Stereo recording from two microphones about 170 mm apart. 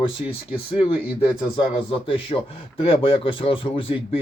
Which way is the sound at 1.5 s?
30° left (ahead or behind).